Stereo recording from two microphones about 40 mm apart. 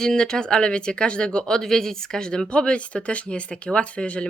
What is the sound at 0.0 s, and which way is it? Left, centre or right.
Speech, centre.